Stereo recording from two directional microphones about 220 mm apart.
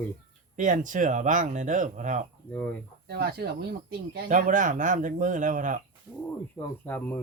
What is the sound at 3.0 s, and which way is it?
Speech, 45° right (ahead or behind).